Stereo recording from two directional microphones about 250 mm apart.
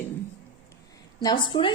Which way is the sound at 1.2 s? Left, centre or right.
Centre.